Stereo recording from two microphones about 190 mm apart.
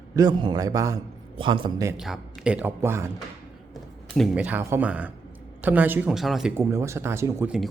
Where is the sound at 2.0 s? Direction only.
5° right (ahead or behind).